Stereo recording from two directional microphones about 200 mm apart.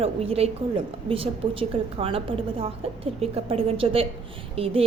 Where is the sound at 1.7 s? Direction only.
25° right (ahead or behind).